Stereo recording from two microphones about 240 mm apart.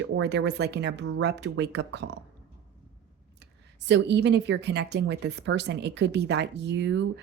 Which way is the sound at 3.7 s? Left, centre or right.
Right.